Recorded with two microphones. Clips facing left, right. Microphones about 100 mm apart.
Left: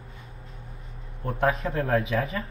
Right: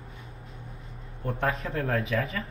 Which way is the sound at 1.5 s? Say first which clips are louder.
Left 4 dB; centre (ahead or behind).